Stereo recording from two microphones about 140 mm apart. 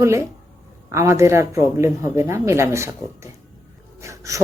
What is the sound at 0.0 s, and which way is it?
Speech, 20° right (ahead or behind).